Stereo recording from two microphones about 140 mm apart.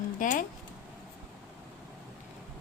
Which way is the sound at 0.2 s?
70° left (ahead or behind).